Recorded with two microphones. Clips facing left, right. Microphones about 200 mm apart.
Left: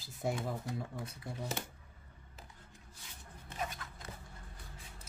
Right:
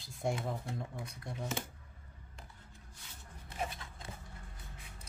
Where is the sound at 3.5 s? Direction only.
25° right (ahead or behind).